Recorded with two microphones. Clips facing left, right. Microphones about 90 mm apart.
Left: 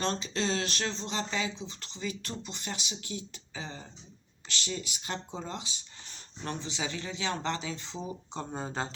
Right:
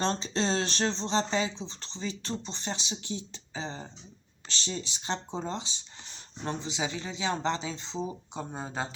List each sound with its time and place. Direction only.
0.0 s speech: 30° right (ahead or behind)
8.3 s speech: 5° right (ahead or behind)